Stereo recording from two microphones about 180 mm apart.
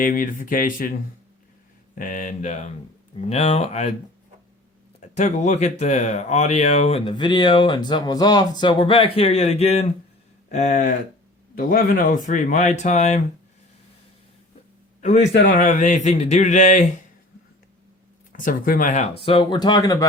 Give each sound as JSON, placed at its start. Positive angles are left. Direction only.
{"t": 0.0, "sound": "speech", "side_deg": 50}
{"t": 2.0, "sound": "speech", "side_deg": 45}
{"t": 4.9, "sound": "speech", "side_deg": 40}
{"t": 15.0, "sound": "speech", "side_deg": 40}
{"t": 18.3, "sound": "speech", "side_deg": 50}
{"t": 19.2, "sound": "speech", "side_deg": 30}